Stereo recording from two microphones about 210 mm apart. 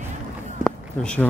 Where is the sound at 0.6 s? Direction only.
5° left (ahead or behind).